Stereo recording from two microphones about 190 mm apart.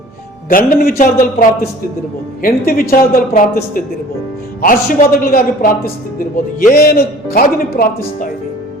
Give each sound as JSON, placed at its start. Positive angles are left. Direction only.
{"t": 0.4, "sound": "a man's voice", "side_deg": 50}